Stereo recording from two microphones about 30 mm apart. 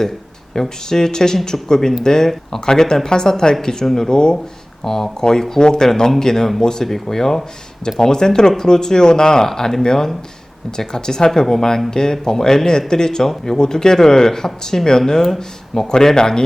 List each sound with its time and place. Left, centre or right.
0.5 s speech: left
4.8 s speech: centre
6.8 s speech: centre